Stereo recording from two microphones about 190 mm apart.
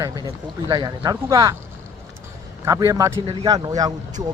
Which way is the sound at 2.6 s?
15° right (ahead or behind).